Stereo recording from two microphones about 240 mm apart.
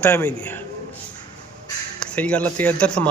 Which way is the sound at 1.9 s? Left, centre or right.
Centre.